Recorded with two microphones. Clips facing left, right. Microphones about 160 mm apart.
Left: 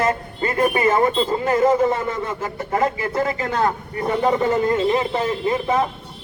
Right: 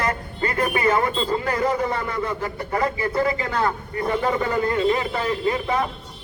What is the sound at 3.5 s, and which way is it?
A man's voice, 20° left (ahead or behind).